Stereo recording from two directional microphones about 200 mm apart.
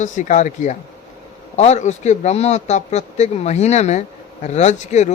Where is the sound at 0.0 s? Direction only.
35° left (ahead or behind).